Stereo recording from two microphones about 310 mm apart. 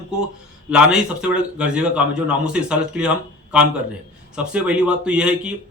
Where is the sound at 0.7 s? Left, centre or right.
Centre.